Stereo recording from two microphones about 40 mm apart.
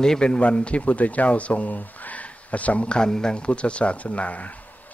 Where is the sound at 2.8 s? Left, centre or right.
Left.